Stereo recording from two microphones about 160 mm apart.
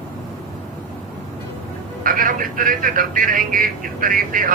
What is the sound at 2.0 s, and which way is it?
A man's voice, 60° right (ahead or behind).